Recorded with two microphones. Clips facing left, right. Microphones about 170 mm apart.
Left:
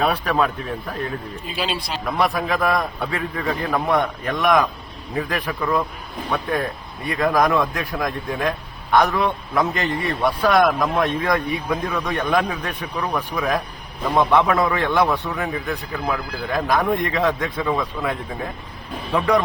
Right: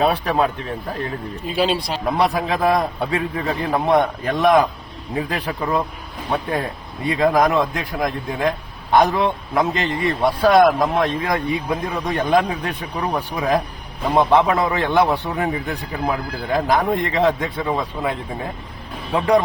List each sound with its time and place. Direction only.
0.0 s speech: 25° right (ahead or behind)
1.6 s speech: 50° right (ahead or behind)
2.0 s speech: 25° right (ahead or behind)